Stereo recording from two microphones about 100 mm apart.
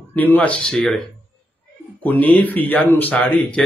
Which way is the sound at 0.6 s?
5° left (ahead or behind).